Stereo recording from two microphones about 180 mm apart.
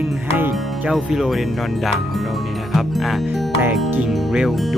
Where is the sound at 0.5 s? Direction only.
Centre (ahead or behind).